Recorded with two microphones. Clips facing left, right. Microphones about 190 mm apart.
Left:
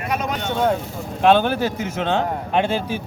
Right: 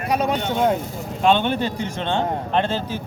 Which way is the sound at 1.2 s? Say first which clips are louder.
Left 2 dB; 5° left (ahead or behind).